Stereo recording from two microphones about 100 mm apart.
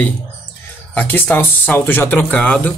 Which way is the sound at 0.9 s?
20° left (ahead or behind).